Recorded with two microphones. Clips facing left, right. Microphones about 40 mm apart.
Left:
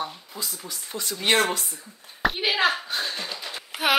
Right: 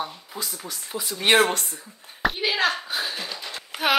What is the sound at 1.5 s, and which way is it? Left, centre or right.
Speech, right.